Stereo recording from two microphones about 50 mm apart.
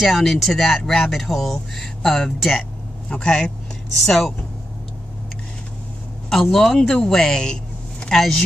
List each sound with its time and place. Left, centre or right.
0.0 s speech: centre
3.1 s speech: centre
4.0 s speech: centre
6.4 s speech: centre